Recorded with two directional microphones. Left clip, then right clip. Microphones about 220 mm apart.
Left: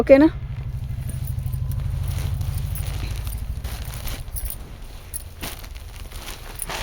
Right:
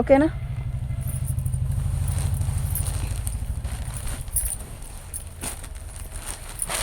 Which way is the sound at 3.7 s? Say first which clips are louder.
Left 3 dB; 45° left (ahead or behind).